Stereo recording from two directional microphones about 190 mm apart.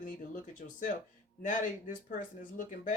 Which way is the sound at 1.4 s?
45° left (ahead or behind).